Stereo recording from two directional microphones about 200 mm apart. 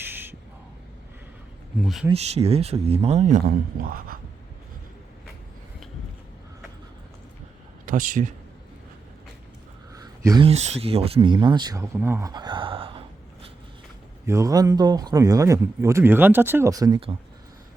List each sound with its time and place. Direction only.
0.0 s a sound: 10° right (ahead or behind)
1.8 s speech: centre (ahead or behind)
2.0 s speech: 30° right (ahead or behind)
7.9 s a man's voice: 40° right (ahead or behind)
9.9 s a sound: 20° right (ahead or behind)
10.5 s speech: 30° right (ahead or behind)
14.3 s speech: 15° right (ahead or behind)